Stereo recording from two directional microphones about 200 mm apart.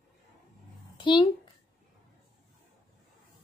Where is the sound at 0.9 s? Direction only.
25° left (ahead or behind).